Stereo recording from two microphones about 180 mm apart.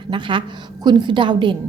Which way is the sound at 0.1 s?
25° right (ahead or behind).